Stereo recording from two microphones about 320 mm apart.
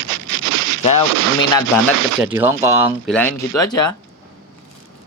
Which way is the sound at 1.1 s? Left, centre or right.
Right.